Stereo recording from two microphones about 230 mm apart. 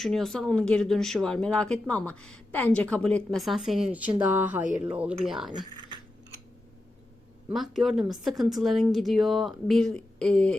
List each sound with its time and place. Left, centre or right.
0.0 s speech: centre
7.5 s speech: centre